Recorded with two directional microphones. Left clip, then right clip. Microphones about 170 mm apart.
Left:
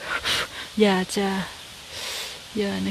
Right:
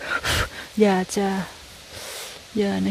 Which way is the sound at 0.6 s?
10° right (ahead or behind).